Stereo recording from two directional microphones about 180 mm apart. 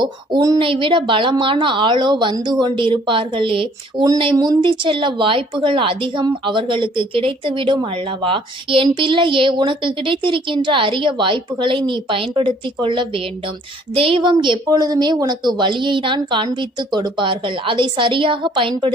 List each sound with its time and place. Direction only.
0.0 s speech: 20° right (ahead or behind)